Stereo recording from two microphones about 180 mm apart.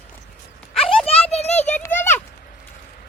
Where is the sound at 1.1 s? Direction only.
35° left (ahead or behind).